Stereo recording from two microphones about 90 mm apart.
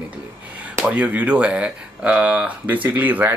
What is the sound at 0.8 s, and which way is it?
Speech, 15° right (ahead or behind).